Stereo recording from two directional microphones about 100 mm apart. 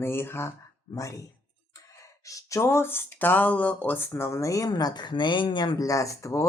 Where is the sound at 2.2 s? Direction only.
30° left (ahead or behind); by 5.7 s 55° left (ahead or behind).